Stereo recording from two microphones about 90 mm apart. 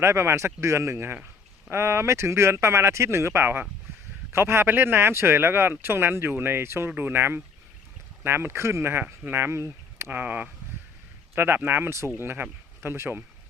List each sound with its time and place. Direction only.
0.0 s speech: 30° right (ahead or behind)